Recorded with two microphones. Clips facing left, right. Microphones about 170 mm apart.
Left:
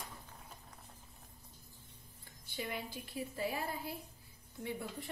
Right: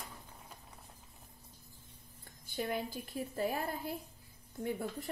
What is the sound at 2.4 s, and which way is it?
Speech, 45° right (ahead or behind).